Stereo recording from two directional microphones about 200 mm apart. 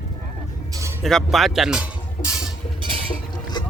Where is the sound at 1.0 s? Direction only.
Centre (ahead or behind).